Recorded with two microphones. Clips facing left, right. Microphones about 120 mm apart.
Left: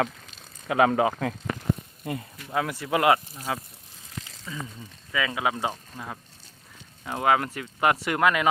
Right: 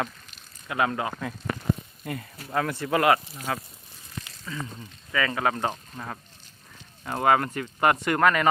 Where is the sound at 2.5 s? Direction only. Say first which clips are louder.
Right 1 dB; 10° left (ahead or behind).